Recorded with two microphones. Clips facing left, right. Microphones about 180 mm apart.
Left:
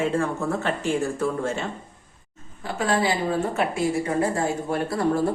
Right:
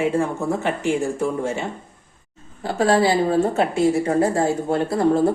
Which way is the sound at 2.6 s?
35° right (ahead or behind).